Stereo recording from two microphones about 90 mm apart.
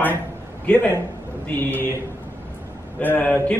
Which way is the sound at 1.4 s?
20° left (ahead or behind).